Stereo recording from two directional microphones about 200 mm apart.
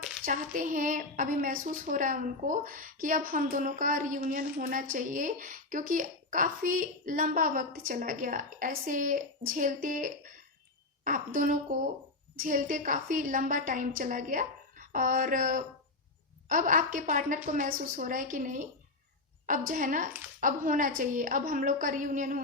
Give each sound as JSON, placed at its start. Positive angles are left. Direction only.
{"t": 0.3, "sound": "a woman's voice", "side_deg": -40}